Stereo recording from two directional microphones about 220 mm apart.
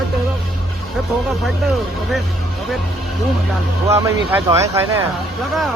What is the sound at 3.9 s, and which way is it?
Speech, 10° right (ahead or behind).